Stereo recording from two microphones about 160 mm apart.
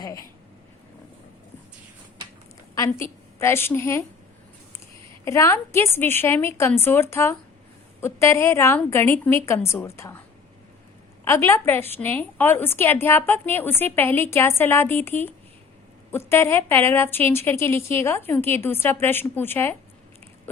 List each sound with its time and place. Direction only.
2.7 s a woman's voice: 20° left (ahead or behind)
5.2 s a woman's voice: 20° left (ahead or behind)
11.3 s a woman's voice: 15° left (ahead or behind)